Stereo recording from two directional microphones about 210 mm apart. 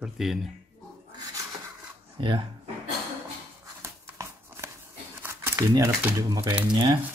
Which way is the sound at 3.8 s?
15° right (ahead or behind).